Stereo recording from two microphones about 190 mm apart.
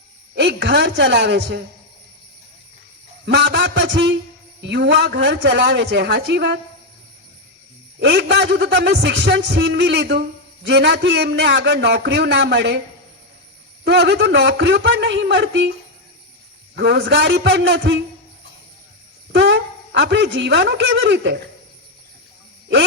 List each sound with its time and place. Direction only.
0.3 s a man's voice: 65° right (ahead or behind)
3.2 s a man's voice: 65° right (ahead or behind)
7.9 s a man's voice: 65° right (ahead or behind)
13.8 s a man's voice: 65° right (ahead or behind)
16.7 s a man's voice: 65° right (ahead or behind)
19.3 s speech: 65° right (ahead or behind)